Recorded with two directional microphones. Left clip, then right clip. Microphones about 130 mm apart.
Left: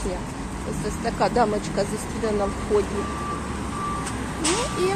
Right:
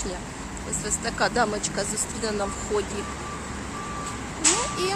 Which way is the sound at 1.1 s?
5° right (ahead or behind).